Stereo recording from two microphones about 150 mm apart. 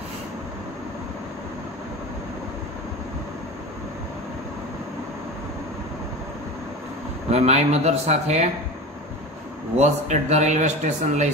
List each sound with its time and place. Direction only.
7.2 s speech: 45° right (ahead or behind)
9.8 s speech: 50° right (ahead or behind)